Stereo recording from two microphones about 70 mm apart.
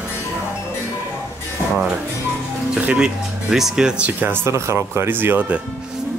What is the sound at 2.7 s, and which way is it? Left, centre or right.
Speech, centre.